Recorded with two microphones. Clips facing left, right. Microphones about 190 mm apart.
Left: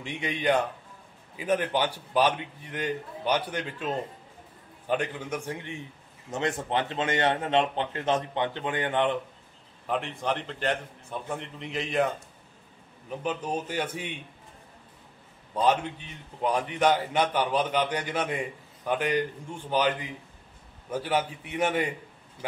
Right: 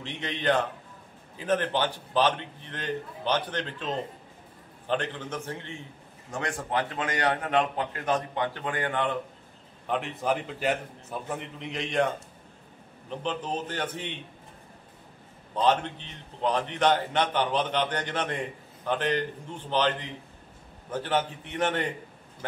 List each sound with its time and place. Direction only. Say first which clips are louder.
0.0 s a man's voice: left 1 dB; 10° left (ahead or behind)
9.8 s a man's voice: right 1 dB; centre (ahead or behind)
13.1 s a man's voice: left 1 dB; 10° left (ahead or behind)
15.5 s a man's voice: even; 10° left (ahead or behind)